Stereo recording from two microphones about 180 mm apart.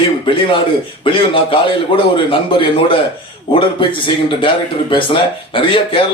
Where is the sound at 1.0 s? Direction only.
30° left (ahead or behind).